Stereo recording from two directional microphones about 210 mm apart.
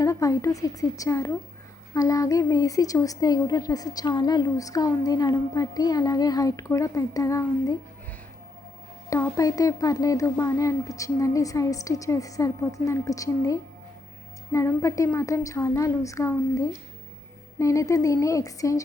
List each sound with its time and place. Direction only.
0.0 s a woman's voice: 15° left (ahead or behind)
9.0 s a woman's voice: 15° left (ahead or behind)